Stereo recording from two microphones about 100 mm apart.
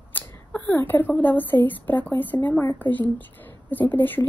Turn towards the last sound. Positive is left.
turn(degrees=20)  # may be behind; listen again after turning